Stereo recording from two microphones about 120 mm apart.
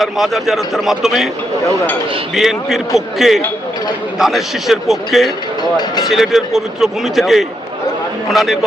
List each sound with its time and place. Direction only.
0.0 s a man's voice: centre (ahead or behind)
2.3 s a man's voice: 5° right (ahead or behind)